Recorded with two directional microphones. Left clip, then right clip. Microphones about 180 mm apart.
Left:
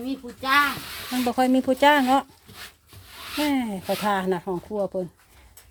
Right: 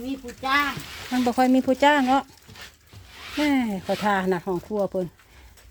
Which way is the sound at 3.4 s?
10° right (ahead or behind).